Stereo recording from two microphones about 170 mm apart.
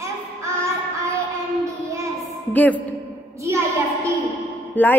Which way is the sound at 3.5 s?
15° right (ahead or behind).